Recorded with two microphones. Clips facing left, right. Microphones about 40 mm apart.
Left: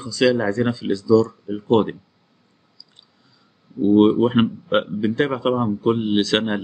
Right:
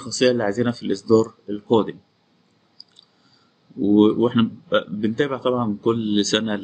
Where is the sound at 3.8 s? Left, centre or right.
Centre.